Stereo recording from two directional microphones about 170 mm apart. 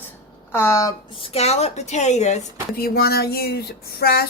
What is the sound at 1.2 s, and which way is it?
A woman's voice, 35° left (ahead or behind).